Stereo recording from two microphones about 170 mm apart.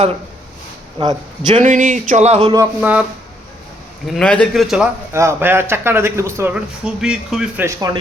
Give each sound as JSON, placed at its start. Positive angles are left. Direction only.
{"t": 0.9, "sound": "speech", "side_deg": -25}
{"t": 1.6, "sound": "speech", "side_deg": -50}
{"t": 2.8, "sound": "speech", "side_deg": -10}
{"t": 4.0, "sound": "a man's voice", "side_deg": 5}
{"t": 5.1, "sound": "speech", "side_deg": -15}